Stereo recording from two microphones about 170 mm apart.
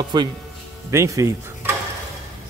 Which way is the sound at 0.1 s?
25° right (ahead or behind).